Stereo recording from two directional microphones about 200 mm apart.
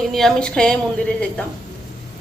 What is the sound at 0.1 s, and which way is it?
Speech, centre (ahead or behind).